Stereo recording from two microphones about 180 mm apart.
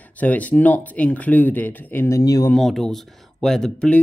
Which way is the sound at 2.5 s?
Centre (ahead or behind).